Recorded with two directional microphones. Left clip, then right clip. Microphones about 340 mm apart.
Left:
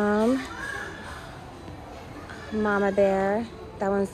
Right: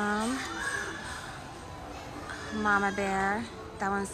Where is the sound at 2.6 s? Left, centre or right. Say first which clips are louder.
Left 5 dB; centre.